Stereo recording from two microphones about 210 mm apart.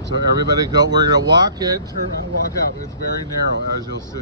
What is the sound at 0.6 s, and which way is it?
Speech, 20° right (ahead or behind).